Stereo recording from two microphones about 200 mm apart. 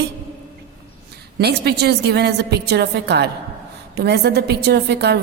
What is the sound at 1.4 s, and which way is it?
A woman's voice, 55° right (ahead or behind).